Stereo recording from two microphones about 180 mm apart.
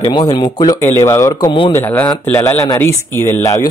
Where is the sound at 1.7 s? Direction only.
10° left (ahead or behind).